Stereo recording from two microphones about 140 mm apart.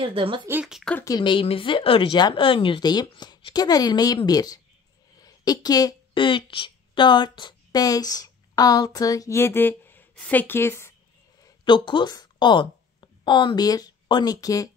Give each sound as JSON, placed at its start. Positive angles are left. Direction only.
{"t": 0.0, "sound": "a woman's voice", "side_deg": -40}
{"t": 0.5, "sound": "speech", "side_deg": -10}
{"t": 1.0, "sound": "speech", "side_deg": 30}
{"t": 11.4, "sound": "speech", "side_deg": 35}